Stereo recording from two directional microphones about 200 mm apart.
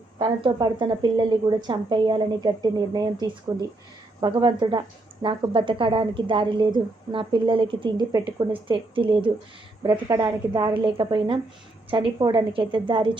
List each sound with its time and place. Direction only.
0.2 s a woman's voice: 20° right (ahead or behind)
9.9 s a woman's voice: 15° right (ahead or behind)
10.8 s a woman's voice: 25° right (ahead or behind)